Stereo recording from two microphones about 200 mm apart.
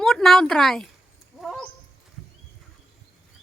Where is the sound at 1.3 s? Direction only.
Centre (ahead or behind).